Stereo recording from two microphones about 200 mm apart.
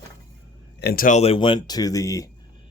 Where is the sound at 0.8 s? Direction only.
50° left (ahead or behind); by 2.2 s 15° left (ahead or behind).